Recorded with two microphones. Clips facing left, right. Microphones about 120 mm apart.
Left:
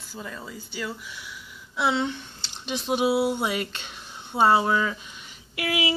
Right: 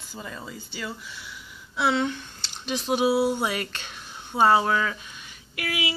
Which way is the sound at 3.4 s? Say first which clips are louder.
Left 1 dB; 20° left (ahead or behind).